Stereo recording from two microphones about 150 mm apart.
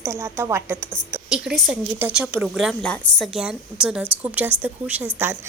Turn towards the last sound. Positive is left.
turn(degrees=-10)  # may be behind; listen again after turning